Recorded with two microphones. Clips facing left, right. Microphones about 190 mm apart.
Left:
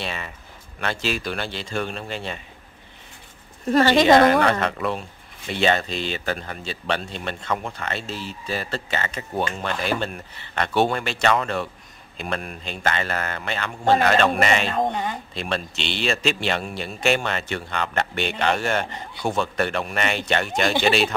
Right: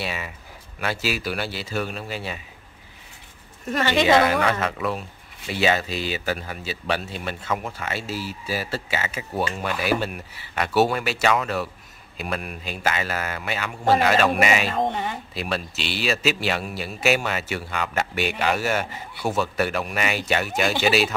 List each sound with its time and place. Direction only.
0.0 s speech: 10° right (ahead or behind)
3.7 s speech: 35° left (ahead or behind)
4.5 s a man's voice: 5° right (ahead or behind)